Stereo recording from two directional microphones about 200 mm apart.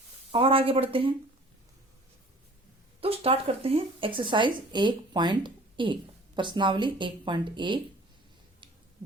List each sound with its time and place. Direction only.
0.3 s speech: 25° right (ahead or behind)
3.0 s speech: 30° right (ahead or behind)